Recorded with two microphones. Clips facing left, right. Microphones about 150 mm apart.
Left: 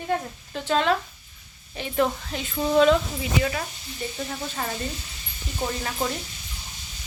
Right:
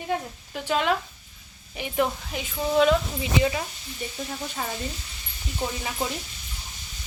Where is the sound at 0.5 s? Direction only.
10° right (ahead or behind).